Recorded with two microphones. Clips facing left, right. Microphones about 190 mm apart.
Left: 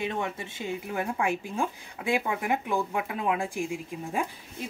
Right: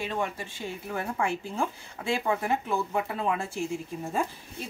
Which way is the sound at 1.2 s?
15° left (ahead or behind).